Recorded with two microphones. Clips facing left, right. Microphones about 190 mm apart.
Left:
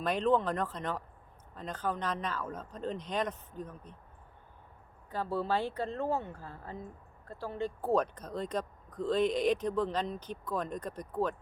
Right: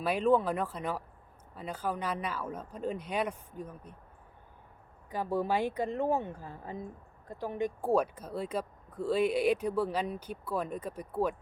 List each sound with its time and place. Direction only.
0.0 s speech: 5° right (ahead or behind)
5.1 s speech: 15° right (ahead or behind)